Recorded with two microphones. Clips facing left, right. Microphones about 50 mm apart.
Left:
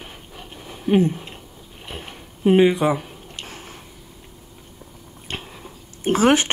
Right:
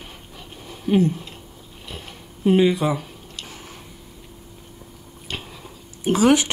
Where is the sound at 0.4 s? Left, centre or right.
Left.